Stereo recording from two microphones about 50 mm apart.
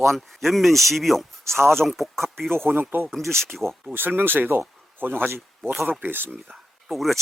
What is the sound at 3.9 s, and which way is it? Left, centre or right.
Speech, right.